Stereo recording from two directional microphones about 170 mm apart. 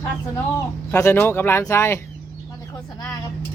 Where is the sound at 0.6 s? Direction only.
15° left (ahead or behind).